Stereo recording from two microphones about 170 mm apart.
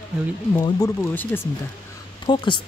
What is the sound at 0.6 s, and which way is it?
Speech, 20° left (ahead or behind).